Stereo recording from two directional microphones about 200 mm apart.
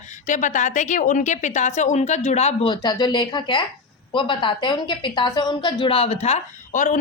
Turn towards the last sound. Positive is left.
turn(degrees=40)  # may be behind; listen again after turning